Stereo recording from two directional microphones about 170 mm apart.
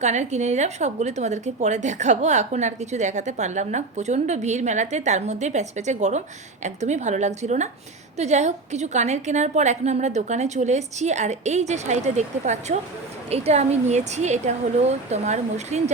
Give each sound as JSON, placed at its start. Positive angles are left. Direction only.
{"t": 0.0, "sound": "a woman's voice", "side_deg": -45}